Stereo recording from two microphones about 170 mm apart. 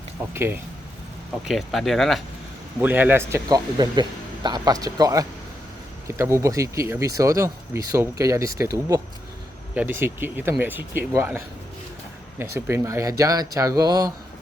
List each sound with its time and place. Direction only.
0.3 s speech: 15° right (ahead or behind)
1.5 s speech: centre (ahead or behind)
2.8 s speech: 10° right (ahead or behind)